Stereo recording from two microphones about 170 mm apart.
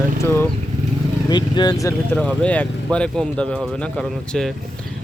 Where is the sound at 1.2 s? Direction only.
25° left (ahead or behind).